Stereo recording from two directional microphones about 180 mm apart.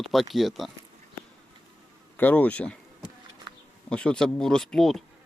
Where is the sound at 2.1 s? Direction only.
10° left (ahead or behind).